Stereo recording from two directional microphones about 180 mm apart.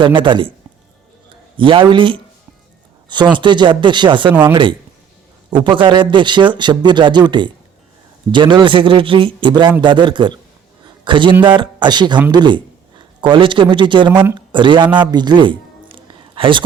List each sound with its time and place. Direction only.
0.0 s speech: 25° right (ahead or behind)
1.5 s speech: 30° right (ahead or behind)
3.3 s a man's voice: 25° right (ahead or behind)